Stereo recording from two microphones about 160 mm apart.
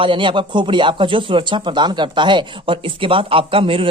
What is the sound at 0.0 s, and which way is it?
Speech, 30° right (ahead or behind).